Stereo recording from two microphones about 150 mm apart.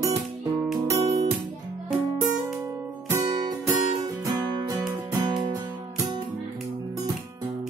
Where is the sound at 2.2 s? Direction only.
10° right (ahead or behind).